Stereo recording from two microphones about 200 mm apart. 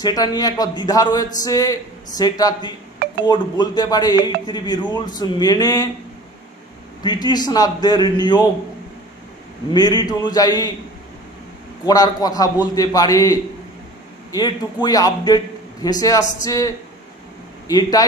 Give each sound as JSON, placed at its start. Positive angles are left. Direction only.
{"t": 0.0, "sound": "a man's voice", "side_deg": 20}
{"t": 7.0, "sound": "a man's voice", "side_deg": 20}
{"t": 9.7, "sound": "a man's voice", "side_deg": 20}
{"t": 11.8, "sound": "a man's voice", "side_deg": 20}